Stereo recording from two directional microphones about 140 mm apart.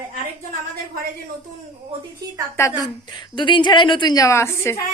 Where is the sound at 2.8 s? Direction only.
30° left (ahead or behind).